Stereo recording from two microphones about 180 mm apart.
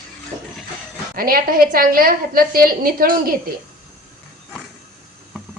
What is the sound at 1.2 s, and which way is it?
A woman's voice, 55° right (ahead or behind).